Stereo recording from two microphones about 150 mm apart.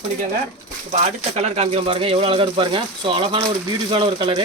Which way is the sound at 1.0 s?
45° right (ahead or behind).